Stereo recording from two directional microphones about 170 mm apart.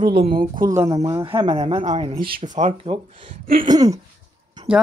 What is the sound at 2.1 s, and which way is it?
Speech, 55° right (ahead or behind).